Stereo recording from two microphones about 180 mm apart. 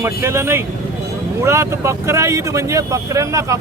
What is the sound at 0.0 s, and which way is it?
Speech, 15° right (ahead or behind).